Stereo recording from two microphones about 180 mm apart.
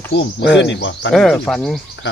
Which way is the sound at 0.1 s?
75° left (ahead or behind).